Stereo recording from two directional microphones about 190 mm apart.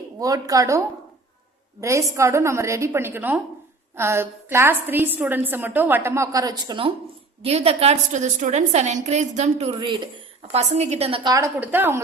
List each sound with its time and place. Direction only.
0.2 s a woman's voice: 20° right (ahead or behind)
1.8 s a woman's voice: 15° right (ahead or behind); by 9.7 s 35° right (ahead or behind)
9.7 s a woman's voice: 25° right (ahead or behind)
10.5 s a woman's voice: 35° right (ahead or behind); by 12.0 s 10° right (ahead or behind)